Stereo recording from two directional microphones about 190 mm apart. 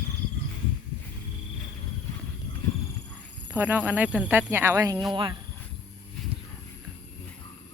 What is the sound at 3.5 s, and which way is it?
Speech, 10° right (ahead or behind).